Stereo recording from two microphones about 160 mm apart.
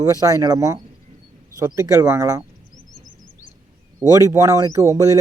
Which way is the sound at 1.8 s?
15° right (ahead or behind).